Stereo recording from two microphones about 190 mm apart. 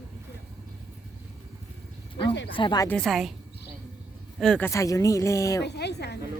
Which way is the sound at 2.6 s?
20° left (ahead or behind).